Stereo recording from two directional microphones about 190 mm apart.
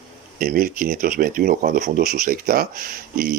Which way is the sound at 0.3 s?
50° right (ahead or behind).